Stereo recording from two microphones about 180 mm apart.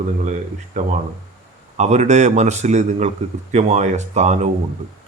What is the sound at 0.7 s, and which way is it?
Speech, 40° right (ahead or behind).